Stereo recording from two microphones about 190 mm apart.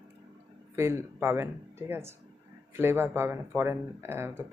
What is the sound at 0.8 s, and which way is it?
Speech, 15° right (ahead or behind).